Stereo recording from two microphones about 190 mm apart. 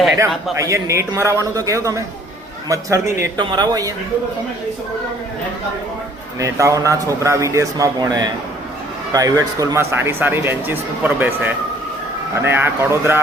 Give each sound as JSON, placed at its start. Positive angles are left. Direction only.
{"t": 0.6, "sound": "speech", "side_deg": -15}
{"t": 6.4, "sound": "speech", "side_deg": -15}